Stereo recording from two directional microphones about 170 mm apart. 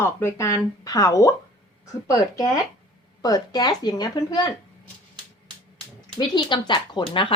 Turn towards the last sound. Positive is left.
turn(degrees=25)  # may be behind; listen again after turning